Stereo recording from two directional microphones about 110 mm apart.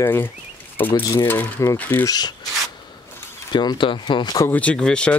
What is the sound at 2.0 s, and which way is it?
Speech, 40° left (ahead or behind).